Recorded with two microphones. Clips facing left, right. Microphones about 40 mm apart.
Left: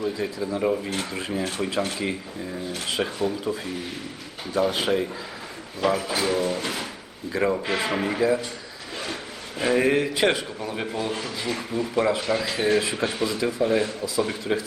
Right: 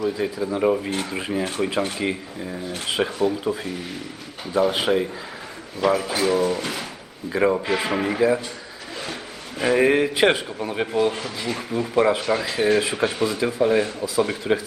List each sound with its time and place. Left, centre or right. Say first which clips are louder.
0.2 s speech: right 3 dB; centre
9.6 s speech: right 3 dB; centre